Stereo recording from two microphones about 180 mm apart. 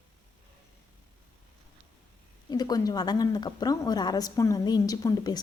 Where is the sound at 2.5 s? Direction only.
20° left (ahead or behind).